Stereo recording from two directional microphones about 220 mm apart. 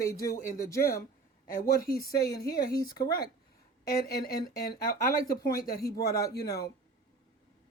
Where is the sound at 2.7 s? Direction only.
15° left (ahead or behind).